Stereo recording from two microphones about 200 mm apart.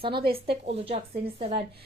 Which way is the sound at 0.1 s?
50° right (ahead or behind).